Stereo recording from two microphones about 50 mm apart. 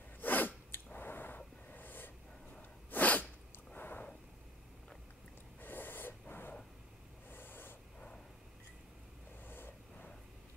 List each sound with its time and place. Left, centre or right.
0.2 s sneeze: left
0.9 s a sound: left
2.9 s sneeze: left
3.7 s a sound: left
5.6 s snort: left
9.5 s vehicle: left